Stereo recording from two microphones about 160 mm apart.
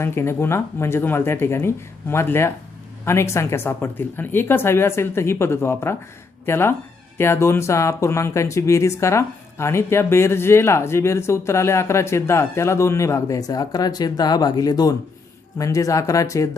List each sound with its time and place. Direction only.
0.0 s speech: 15° left (ahead or behind)